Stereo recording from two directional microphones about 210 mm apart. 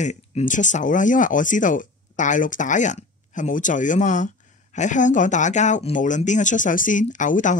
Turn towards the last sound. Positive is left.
turn(degrees=35)  # may be behind; listen again after turning